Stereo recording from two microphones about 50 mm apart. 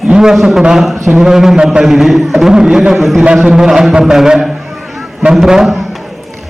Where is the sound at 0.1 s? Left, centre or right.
Centre.